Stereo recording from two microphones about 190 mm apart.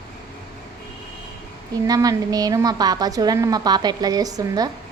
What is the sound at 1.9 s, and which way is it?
A woman's voice, 20° right (ahead or behind).